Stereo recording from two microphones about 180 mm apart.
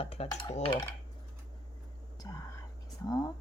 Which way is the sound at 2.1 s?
20° left (ahead or behind).